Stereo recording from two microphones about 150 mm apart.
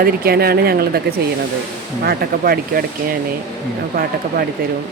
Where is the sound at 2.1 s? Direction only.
85° right.